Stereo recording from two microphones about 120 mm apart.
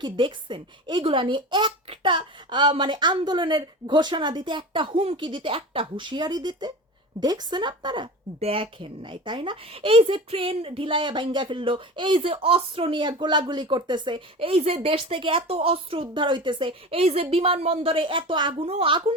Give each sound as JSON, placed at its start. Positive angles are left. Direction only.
{"t": 0.0, "sound": "a woman's voice", "side_deg": -40}
{"t": 8.4, "sound": "a woman's voice", "side_deg": -50}